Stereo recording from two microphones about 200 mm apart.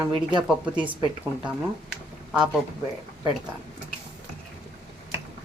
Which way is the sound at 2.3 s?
5° right (ahead or behind).